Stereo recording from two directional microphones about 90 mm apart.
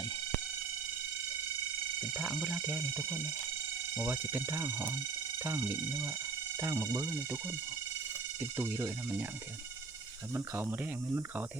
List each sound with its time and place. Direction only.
2.1 s speech: 15° right (ahead or behind)
10.3 s speech: 25° right (ahead or behind)